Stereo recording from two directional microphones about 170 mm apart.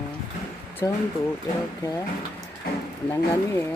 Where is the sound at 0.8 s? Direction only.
20° left (ahead or behind).